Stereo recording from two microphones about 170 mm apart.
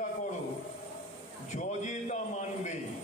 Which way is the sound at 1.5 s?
45° left (ahead or behind).